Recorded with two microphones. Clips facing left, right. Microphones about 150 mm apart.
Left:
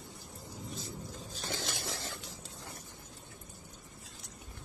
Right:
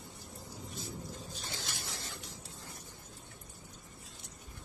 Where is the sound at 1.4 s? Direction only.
90° left.